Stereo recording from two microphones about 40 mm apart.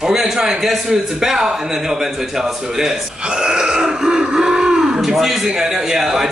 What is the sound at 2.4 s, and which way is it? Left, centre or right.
Throat clearing, centre.